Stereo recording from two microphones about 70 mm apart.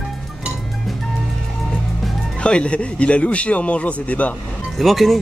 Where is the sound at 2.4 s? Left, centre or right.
Centre.